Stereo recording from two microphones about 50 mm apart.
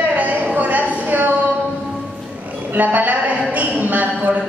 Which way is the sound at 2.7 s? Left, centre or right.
Right.